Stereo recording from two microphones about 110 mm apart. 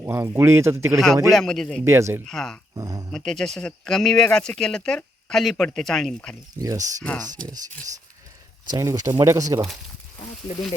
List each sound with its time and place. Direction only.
0.0 s speech: 25° right (ahead or behind)
0.9 s speech: centre (ahead or behind)
1.8 s speech: 25° right (ahead or behind)
2.2 s speech: 5° left (ahead or behind)
2.7 s a sound: 30° right (ahead or behind)
3.1 s speech: 5° left (ahead or behind)
6.6 s speech: 30° right (ahead or behind)
8.7 s speech: 30° right (ahead or behind)